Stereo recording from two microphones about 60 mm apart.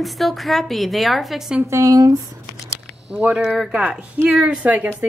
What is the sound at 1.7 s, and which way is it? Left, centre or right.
Speech, right.